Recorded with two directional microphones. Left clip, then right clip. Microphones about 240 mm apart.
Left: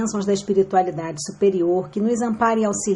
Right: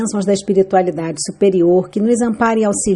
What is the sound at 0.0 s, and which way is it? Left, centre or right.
A woman's voice, right.